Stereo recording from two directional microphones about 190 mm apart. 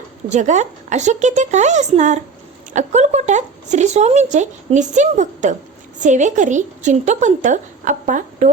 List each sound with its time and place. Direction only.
0.3 s speech: 40° right (ahead or behind)